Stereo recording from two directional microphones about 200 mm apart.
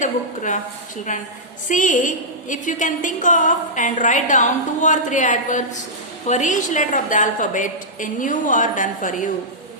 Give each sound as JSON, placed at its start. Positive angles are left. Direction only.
{"t": 0.0, "sound": "a woman's voice", "side_deg": 40}
{"t": 1.6, "sound": "a woman's voice", "side_deg": 40}